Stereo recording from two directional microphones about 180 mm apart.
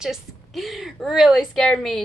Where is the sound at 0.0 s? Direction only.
Centre (ahead or behind).